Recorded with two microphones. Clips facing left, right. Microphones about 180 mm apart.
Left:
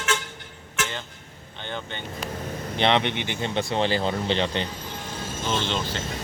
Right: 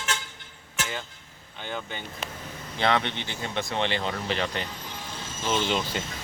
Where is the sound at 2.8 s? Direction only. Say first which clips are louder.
Left 3 dB; 20° left (ahead or behind).